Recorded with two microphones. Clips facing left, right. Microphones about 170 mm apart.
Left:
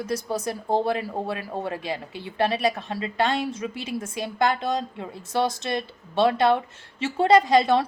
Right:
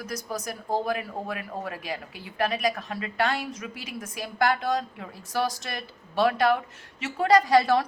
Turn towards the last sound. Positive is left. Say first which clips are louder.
# left 2 dB
turn(degrees=20)  # may be behind; listen again after turning